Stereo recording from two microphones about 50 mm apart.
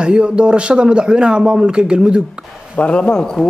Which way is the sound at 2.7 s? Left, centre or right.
Left.